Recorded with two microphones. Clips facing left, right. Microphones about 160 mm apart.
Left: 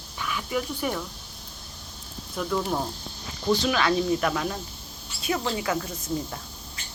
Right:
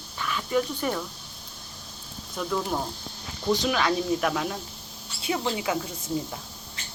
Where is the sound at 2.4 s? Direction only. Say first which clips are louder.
Left 1 dB; centre (ahead or behind).